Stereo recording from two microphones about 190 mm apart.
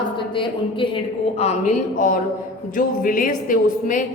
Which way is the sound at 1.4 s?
35° left (ahead or behind).